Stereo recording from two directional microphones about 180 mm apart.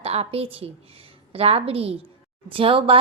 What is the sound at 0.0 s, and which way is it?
A woman's voice, 35° right (ahead or behind).